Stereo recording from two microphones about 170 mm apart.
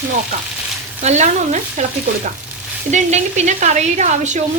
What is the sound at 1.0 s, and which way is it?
Speech, 45° right (ahead or behind).